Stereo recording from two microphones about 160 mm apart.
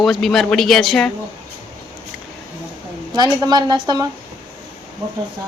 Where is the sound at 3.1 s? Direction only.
25° right (ahead or behind).